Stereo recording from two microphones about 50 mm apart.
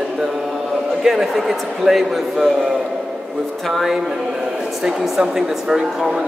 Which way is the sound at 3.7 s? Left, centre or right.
Centre.